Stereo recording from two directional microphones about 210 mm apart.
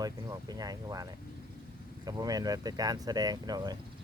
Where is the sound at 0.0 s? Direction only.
15° right (ahead or behind).